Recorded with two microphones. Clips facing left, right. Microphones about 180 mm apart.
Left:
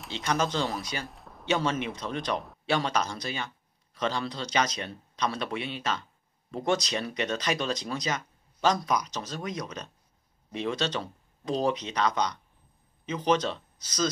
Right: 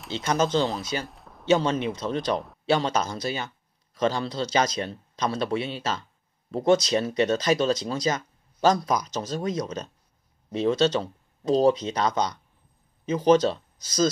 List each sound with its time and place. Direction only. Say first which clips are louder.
0.0 s speech: right 4 dB; centre (ahead or behind)
1.0 s a sound: right 1 dB; centre (ahead or behind)
1.5 s speech: right 6 dB; 35° right (ahead or behind)